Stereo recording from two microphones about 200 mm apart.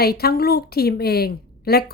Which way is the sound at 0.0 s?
50° left (ahead or behind).